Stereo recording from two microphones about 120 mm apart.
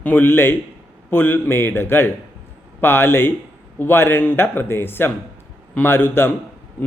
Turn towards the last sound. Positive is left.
turn(degrees=20)  # may be behind; listen again after turning